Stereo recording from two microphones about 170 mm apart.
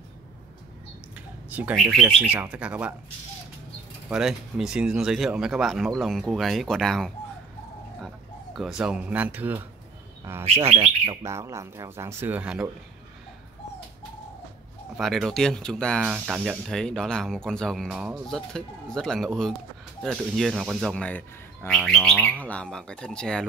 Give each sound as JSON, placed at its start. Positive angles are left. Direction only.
{"t": 1.5, "sound": "speech", "side_deg": -10}
{"t": 1.8, "sound": "speech", "side_deg": 0}
{"t": 4.1, "sound": "speech", "side_deg": 0}
{"t": 8.5, "sound": "speech", "side_deg": -5}
{"t": 10.4, "sound": "speech", "side_deg": -35}
{"t": 11.2, "sound": "speech", "side_deg": -15}
{"t": 15.0, "sound": "speech", "side_deg": 0}